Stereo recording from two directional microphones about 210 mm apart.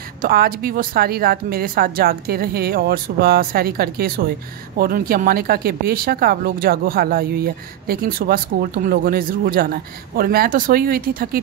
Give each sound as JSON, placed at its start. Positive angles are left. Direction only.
{"t": 0.2, "sound": "speech", "side_deg": -45}